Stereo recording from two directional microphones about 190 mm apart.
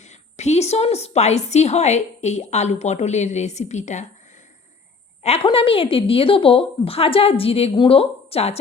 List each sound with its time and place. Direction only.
0.0 s a woman's voice: 35° left (ahead or behind)
5.2 s a woman's voice: 30° left (ahead or behind)